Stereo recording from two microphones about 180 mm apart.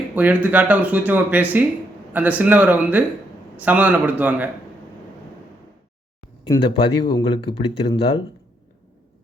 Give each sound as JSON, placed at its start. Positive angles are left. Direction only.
{"t": 0.2, "sound": "speech", "side_deg": -10}
{"t": 6.4, "sound": "speech", "side_deg": 25}